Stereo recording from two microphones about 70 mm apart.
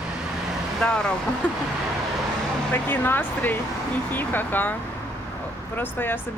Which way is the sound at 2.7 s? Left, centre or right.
Left.